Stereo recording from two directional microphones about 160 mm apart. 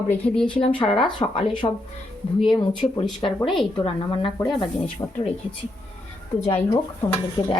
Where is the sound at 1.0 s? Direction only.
30° left (ahead or behind).